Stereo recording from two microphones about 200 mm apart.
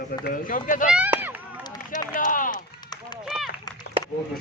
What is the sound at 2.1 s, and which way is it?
Run, 40° left (ahead or behind).